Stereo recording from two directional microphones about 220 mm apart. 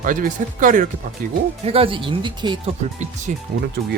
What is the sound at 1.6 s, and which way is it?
Speech, 25° right (ahead or behind).